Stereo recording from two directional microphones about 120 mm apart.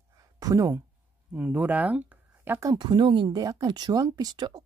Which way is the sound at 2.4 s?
25° right (ahead or behind).